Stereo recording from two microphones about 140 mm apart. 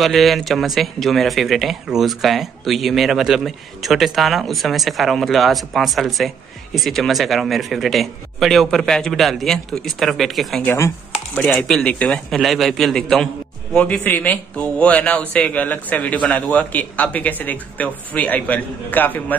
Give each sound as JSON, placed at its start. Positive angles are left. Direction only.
{"t": 0.0, "sound": "speech", "side_deg": 0}
{"t": 10.6, "sound": "a man's voice", "side_deg": 15}